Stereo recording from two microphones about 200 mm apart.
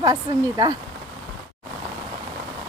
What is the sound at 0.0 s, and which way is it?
Speech, 20° right (ahead or behind).